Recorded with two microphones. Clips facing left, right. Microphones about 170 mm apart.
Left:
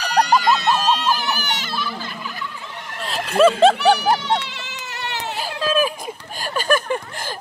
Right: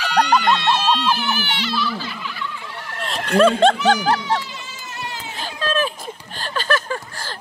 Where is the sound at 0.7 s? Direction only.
40° left (ahead or behind).